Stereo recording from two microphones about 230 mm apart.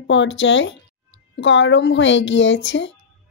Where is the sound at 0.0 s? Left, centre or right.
Left.